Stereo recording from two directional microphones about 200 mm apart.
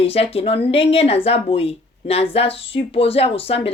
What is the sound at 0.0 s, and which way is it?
Speech, 30° left (ahead or behind).